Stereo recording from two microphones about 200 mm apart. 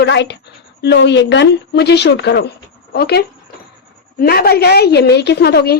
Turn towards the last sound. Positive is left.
turn(degrees=55)  # may be behind; listen again after turning